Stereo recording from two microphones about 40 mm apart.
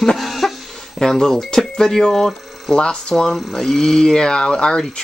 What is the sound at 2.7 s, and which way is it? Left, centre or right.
Speech, left.